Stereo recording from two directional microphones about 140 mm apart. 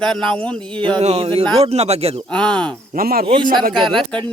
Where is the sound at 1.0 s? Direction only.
45° right (ahead or behind).